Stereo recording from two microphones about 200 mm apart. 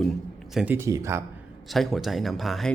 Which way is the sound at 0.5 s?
10° right (ahead or behind).